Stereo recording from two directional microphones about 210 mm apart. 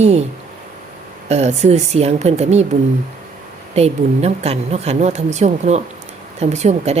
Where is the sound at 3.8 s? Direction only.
30° right (ahead or behind).